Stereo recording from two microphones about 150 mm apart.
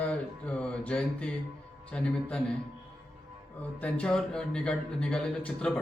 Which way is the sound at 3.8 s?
5° left (ahead or behind).